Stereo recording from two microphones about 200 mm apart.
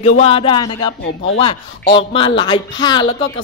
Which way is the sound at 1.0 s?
60° left (ahead or behind).